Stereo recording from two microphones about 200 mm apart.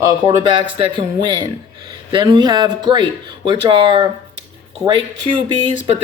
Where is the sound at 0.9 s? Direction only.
25° right (ahead or behind).